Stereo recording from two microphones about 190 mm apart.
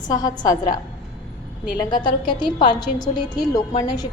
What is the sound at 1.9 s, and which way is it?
A woman's voice, 25° left (ahead or behind).